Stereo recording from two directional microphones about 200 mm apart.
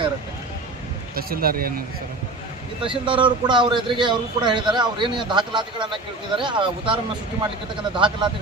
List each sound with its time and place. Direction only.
1.1 s speech: 50° right (ahead or behind)
2.8 s speech: 25° right (ahead or behind)